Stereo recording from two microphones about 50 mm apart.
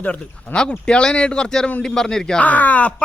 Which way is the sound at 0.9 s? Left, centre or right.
Centre.